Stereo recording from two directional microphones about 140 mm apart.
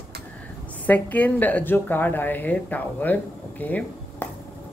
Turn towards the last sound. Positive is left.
turn(degrees=10)  # may be behind; listen again after turning